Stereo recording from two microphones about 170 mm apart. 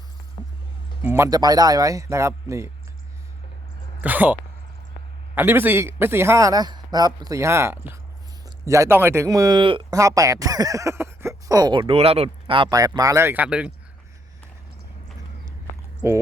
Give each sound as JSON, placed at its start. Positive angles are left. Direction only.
{"t": 1.0, "sound": "speech", "side_deg": -15}
{"t": 4.0, "sound": "a man's voice", "side_deg": -10}
{"t": 16.0, "sound": "a man's voice", "side_deg": -15}